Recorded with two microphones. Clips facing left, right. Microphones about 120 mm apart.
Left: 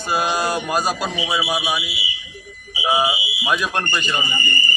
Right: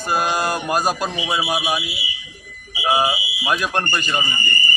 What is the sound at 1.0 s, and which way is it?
Speech, 5° left (ahead or behind).